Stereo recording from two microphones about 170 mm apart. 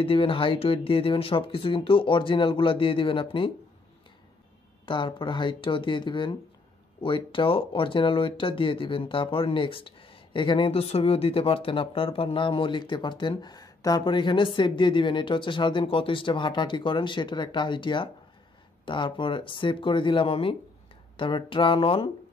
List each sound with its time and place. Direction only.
0.0 s speech: 30° left (ahead or behind)
4.8 s speech: 30° left (ahead or behind)